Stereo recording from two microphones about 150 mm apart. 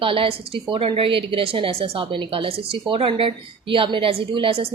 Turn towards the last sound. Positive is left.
turn(degrees=-35)  # may be behind; listen again after turning